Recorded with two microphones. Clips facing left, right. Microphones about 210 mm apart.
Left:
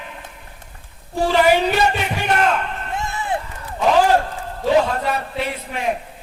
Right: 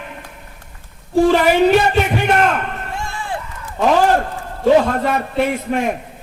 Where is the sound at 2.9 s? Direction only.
20° left (ahead or behind).